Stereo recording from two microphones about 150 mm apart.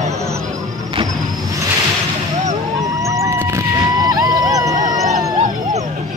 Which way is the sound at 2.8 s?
20° right (ahead or behind).